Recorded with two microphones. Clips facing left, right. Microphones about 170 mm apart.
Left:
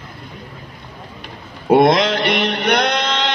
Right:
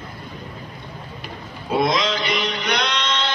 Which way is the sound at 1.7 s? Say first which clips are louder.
Left 8 dB; 65° left (ahead or behind).